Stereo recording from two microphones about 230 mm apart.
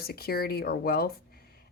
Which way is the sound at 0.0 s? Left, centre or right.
Left.